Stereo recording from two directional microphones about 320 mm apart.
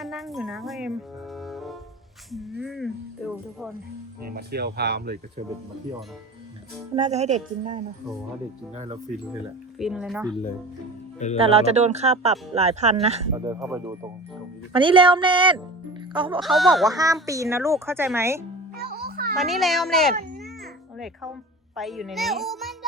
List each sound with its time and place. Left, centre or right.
0.0 s speech: centre
1.4 s music: centre
2.6 s speech: centre
4.3 s speech: right
6.9 s speech: right
9.7 s speech: centre
11.3 s a woman's voice: centre
16.4 s speech: centre
16.9 s a woman's voice: centre
18.9 s music: right
19.4 s speech: centre
21.8 s a child's voice: centre